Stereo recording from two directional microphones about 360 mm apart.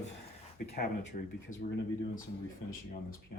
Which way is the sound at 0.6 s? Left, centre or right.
Left.